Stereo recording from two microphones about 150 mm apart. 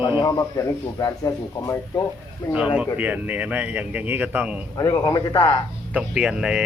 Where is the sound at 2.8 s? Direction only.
10° right (ahead or behind).